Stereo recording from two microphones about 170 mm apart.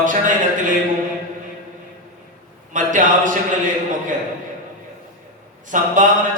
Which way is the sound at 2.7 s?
50° right (ahead or behind).